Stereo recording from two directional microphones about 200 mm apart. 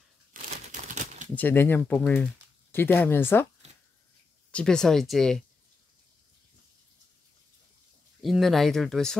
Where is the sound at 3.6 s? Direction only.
35° right (ahead or behind).